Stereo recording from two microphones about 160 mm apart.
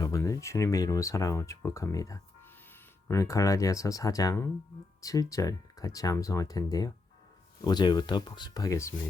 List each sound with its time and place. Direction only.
0.0 s speech: 20° left (ahead or behind)